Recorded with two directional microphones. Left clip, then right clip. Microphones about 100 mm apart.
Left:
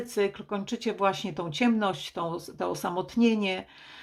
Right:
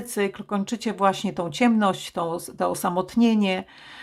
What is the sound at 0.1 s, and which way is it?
Speech, 35° right (ahead or behind).